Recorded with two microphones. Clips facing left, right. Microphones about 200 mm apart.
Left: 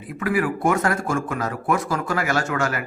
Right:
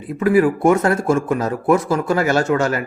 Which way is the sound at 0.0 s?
25° right (ahead or behind).